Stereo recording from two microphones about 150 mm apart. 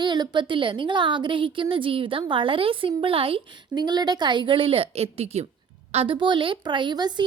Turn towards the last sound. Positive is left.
turn(degrees=-30)  # may be behind; listen again after turning